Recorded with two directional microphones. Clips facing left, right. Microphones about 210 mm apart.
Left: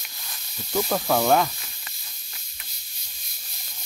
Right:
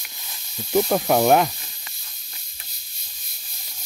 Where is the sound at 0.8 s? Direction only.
20° right (ahead or behind).